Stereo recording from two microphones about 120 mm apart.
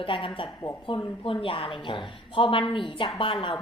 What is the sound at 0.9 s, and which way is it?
A woman's voice, 45° left (ahead or behind).